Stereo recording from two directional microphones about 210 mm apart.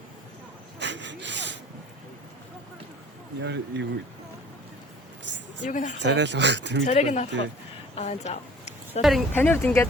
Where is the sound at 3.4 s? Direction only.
55° right (ahead or behind).